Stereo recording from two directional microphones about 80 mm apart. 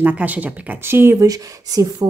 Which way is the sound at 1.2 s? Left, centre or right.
Right.